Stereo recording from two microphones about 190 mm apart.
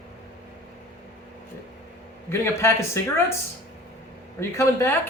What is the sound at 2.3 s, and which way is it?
Speech, 15° left (ahead or behind).